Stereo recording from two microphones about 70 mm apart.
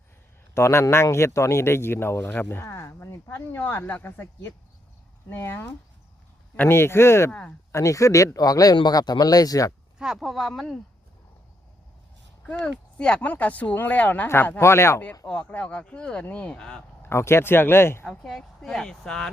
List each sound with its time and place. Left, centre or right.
0.5 s speech: left
7.3 s speech: centre
7.7 s speech: left
10.2 s speech: centre
12.5 s speech: centre
14.6 s speech: left
15.3 s speech: centre
17.0 s speech: left
18.0 s speech: centre
18.3 s speech: centre